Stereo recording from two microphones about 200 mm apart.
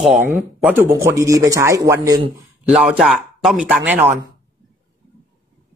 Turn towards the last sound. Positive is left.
turn(degrees=-10)  # may be behind; listen again after turning